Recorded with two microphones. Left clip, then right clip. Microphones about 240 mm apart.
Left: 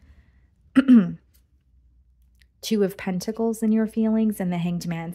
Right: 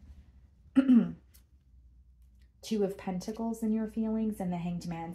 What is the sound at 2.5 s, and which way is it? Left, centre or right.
Speech, left.